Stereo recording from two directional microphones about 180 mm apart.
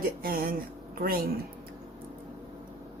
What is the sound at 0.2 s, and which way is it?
Speech, 55° right (ahead or behind).